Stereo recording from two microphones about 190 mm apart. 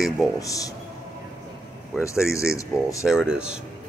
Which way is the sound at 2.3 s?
15° left (ahead or behind).